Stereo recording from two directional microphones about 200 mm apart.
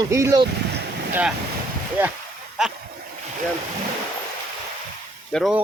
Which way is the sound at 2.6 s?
5° right (ahead or behind).